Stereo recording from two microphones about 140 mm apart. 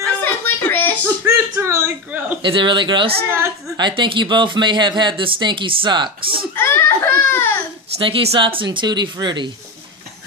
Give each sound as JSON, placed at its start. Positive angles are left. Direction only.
{"t": 0.2, "sound": "a sound", "side_deg": 15}
{"t": 1.2, "sound": "a sound", "side_deg": -20}
{"t": 2.4, "sound": "speech", "side_deg": -35}
{"t": 3.3, "sound": "a woman's voice", "side_deg": -20}
{"t": 3.7, "sound": "speech", "side_deg": -35}
{"t": 6.5, "sound": "giggle", "side_deg": 20}
{"t": 7.9, "sound": "speech", "side_deg": -45}